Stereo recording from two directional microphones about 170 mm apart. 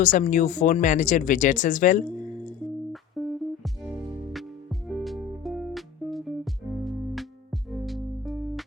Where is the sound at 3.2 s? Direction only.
Centre (ahead or behind).